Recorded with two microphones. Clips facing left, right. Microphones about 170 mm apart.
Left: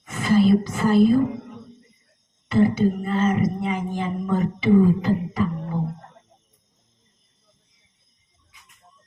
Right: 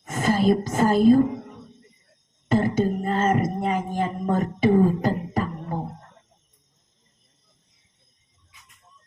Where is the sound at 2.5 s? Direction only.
45° right (ahead or behind).